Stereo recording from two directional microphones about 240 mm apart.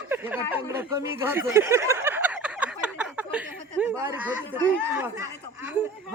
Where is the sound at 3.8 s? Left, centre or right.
Centre.